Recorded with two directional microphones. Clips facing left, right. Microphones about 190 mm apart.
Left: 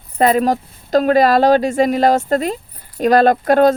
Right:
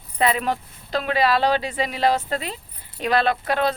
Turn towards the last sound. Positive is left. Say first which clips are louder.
# left 10 dB
turn(degrees=45)  # may be behind; listen again after turning